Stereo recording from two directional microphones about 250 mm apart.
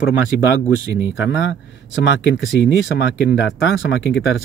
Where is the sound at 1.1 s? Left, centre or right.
Left.